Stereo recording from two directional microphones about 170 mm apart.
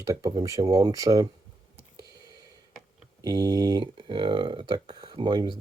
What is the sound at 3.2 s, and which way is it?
Speech, 20° right (ahead or behind).